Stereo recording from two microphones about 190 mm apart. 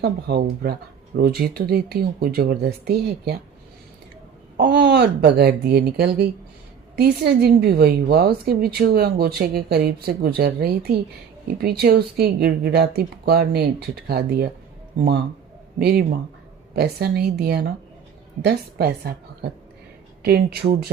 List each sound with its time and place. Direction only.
0.0 s a woman's voice: 60° right (ahead or behind)
4.5 s a woman's voice: 50° right (ahead or behind)
15.8 s a woman's voice: 55° right (ahead or behind)